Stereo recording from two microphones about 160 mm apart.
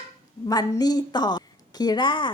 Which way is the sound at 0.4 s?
25° left (ahead or behind).